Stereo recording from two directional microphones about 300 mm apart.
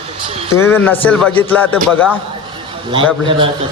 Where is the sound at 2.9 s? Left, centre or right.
Centre.